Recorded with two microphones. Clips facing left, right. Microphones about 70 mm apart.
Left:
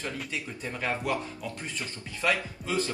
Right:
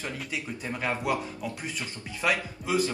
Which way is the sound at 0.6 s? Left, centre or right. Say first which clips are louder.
Right 1 dB; centre.